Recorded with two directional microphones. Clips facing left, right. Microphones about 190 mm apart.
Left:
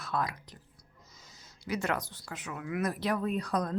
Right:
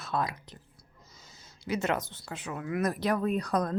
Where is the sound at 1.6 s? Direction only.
25° right (ahead or behind).